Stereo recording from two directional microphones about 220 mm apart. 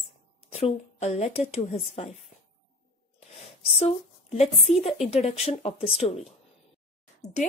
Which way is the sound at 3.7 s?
25° left (ahead or behind).